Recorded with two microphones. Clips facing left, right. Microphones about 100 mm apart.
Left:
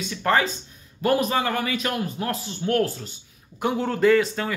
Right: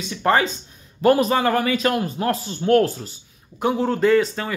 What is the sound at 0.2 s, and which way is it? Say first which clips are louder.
Speech: right 3 dB; 20° right (ahead or behind).